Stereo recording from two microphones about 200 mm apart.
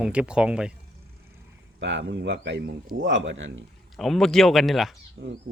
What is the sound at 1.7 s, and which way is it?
Speech, 65° right (ahead or behind).